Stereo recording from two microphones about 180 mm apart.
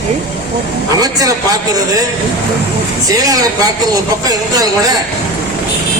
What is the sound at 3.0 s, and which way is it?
Speech, 20° right (ahead or behind).